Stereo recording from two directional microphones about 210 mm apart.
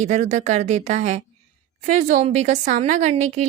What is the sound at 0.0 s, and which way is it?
A woman's voice, 35° right (ahead or behind).